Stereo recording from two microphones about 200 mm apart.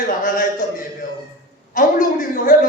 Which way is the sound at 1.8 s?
40° left (ahead or behind).